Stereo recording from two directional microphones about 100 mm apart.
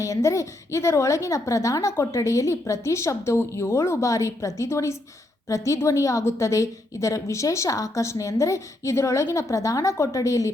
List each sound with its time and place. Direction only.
0.0 s a woman's voice: 30° left (ahead or behind)